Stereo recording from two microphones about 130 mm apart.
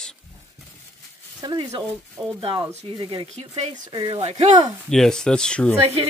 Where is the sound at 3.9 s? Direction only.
30° right (ahead or behind).